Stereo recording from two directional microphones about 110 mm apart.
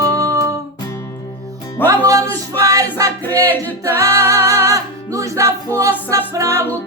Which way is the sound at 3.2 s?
15° left (ahead or behind).